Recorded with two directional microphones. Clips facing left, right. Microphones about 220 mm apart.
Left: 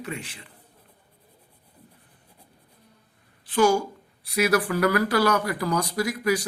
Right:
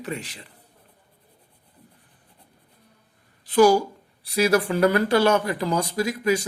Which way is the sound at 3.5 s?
40° right (ahead or behind).